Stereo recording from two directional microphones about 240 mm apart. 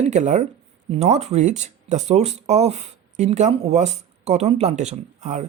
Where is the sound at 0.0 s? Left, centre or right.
Right.